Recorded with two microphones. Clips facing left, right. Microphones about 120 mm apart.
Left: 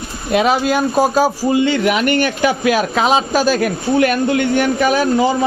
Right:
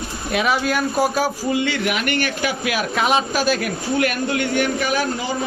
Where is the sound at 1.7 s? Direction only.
40° left (ahead or behind).